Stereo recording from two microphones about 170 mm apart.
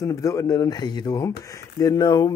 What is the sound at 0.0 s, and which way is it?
Speech, 20° left (ahead or behind).